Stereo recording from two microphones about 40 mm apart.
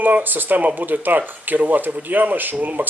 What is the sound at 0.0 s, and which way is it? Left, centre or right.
Speech, right.